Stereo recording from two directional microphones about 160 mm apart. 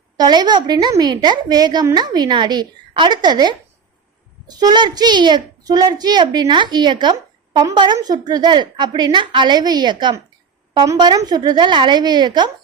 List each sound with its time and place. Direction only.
0.2 s a child's voice: 25° right (ahead or behind)